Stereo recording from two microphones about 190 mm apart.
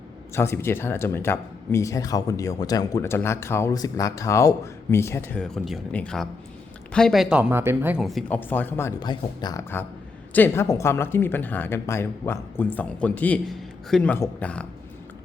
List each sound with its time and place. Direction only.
0.3 s speech: 15° left (ahead or behind); by 8.0 s 10° right (ahead or behind)
8.0 s speech: 5° left (ahead or behind)